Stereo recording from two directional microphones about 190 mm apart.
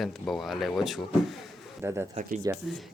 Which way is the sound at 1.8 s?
15° right (ahead or behind).